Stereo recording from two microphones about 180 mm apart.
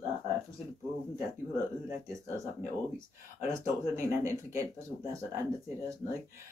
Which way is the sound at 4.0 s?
15° right (ahead or behind).